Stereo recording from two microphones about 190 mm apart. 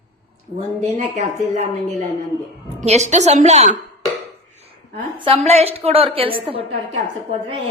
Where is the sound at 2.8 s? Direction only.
35° right (ahead or behind).